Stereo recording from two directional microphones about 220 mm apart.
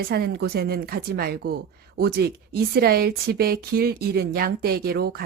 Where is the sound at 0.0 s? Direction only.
45° right (ahead or behind).